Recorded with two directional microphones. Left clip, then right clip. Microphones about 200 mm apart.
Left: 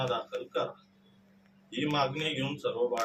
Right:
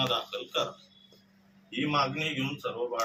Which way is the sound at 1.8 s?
15° left (ahead or behind).